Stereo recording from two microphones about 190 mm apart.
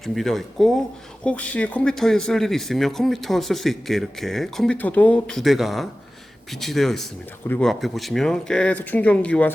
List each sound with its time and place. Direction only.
0.0 s speech: centre (ahead or behind)